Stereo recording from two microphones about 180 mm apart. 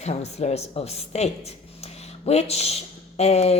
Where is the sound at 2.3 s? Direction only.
35° left (ahead or behind).